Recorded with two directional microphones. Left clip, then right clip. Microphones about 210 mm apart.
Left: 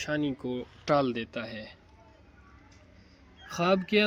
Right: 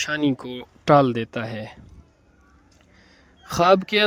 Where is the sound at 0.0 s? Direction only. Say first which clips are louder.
Right 8 dB; 40° right (ahead or behind).